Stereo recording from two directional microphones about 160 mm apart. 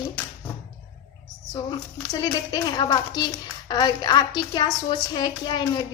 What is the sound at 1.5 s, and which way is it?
A woman's voice, 25° left (ahead or behind).